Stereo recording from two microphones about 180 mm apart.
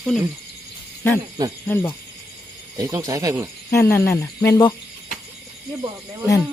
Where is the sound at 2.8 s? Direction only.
20° right (ahead or behind).